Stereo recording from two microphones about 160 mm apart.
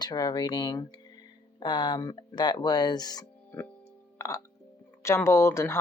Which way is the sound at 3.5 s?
10° left (ahead or behind).